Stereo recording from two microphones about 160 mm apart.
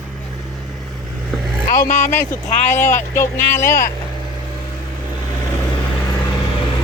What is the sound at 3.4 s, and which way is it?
Speech, 50° left (ahead or behind).